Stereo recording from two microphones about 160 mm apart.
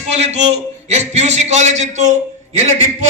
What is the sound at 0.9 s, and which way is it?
A man's voice, 45° right (ahead or behind).